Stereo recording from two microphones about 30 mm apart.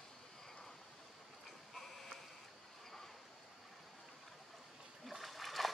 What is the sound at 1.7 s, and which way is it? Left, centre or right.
Sheep, centre.